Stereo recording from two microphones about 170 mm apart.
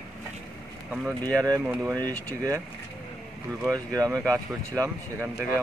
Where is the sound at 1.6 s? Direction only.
5° right (ahead or behind).